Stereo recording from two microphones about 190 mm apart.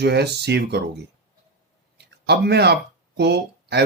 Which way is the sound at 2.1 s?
60° right (ahead or behind).